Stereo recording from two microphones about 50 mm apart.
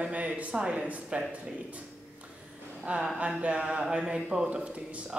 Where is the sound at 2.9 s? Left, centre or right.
Right.